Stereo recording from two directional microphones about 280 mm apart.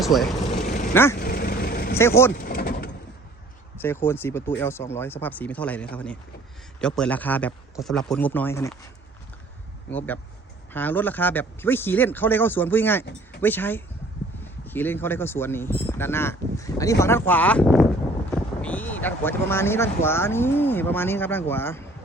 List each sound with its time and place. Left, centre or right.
0.0 s speech: centre
0.6 s dog: left
1.2 s vehicle: left
2.0 s speech: centre
2.4 s vehicle: left
3.8 s a man's voice: centre
10.7 s speech: centre